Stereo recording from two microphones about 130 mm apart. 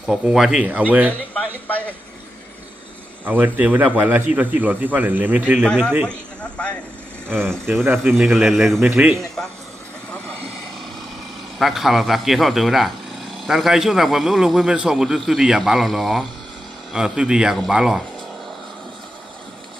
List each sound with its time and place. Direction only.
0.0 s a man's voice: 5° right (ahead or behind)
1.6 s speech: 10° left (ahead or behind)
3.2 s a man's voice: 15° right (ahead or behind)
6.1 s speech: 10° left (ahead or behind)
7.3 s speech: 15° right (ahead or behind)
7.5 s speech: 5° left (ahead or behind)
11.6 s speech: centre (ahead or behind)